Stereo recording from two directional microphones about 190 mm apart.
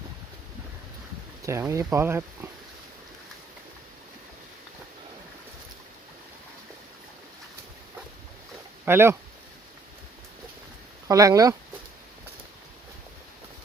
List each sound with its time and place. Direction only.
1.5 s speech: 15° right (ahead or behind)
8.8 s speech: 10° right (ahead or behind)
11.1 s speech: 15° right (ahead or behind)